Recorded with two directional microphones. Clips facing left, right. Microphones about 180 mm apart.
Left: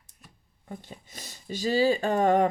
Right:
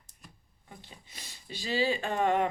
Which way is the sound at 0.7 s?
45° left (ahead or behind).